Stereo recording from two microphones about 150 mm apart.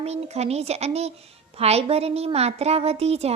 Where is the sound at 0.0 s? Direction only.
45° right (ahead or behind).